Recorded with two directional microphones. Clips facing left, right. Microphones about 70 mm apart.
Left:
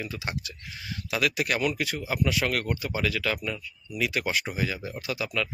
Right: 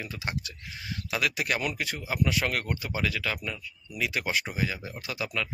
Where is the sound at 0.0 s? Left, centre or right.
Right.